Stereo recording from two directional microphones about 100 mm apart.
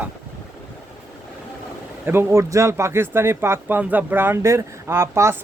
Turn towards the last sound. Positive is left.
turn(degrees=-30)  # may be behind; listen again after turning